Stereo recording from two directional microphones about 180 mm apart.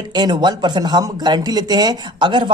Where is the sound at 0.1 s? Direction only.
25° right (ahead or behind).